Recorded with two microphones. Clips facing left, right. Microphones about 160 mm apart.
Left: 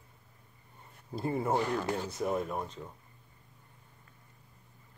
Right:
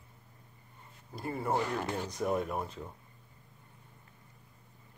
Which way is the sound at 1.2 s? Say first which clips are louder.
Left 5 dB; 25° left (ahead or behind).